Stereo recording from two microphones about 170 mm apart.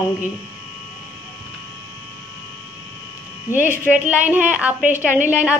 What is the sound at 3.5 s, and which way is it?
Speech, 20° left (ahead or behind).